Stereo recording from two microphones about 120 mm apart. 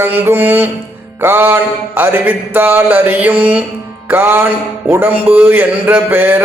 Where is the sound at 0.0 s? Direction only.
15° right (ahead or behind).